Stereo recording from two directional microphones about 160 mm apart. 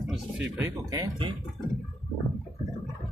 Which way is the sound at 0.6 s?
25° right (ahead or behind).